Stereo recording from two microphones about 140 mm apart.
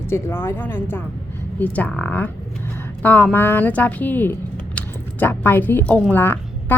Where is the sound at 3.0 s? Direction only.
10° left (ahead or behind).